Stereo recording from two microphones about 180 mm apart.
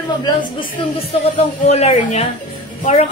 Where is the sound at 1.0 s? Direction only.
35° left (ahead or behind).